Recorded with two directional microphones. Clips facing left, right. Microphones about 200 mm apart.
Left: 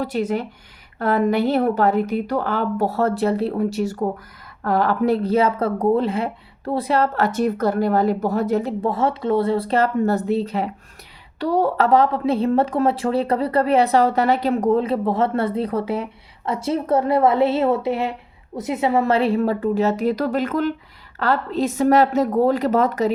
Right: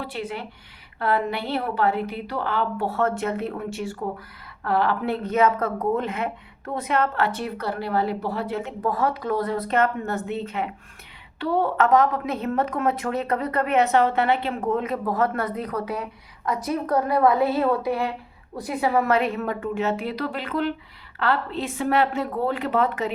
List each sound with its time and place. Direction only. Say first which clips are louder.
0.0 s speech: left 9 dB; 45° left (ahead or behind)
8.8 s a woman's voice: left 3 dB; 25° left (ahead or behind)